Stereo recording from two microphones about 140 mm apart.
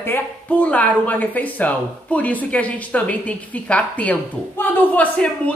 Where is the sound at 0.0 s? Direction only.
10° left (ahead or behind).